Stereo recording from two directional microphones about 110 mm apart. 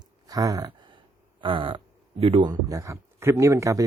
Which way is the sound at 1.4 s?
50° right (ahead or behind).